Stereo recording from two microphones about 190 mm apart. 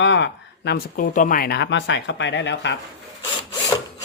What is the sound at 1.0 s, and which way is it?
Speech, 40° left (ahead or behind).